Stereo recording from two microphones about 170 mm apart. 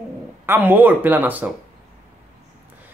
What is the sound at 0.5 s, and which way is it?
Speech, 10° right (ahead or behind).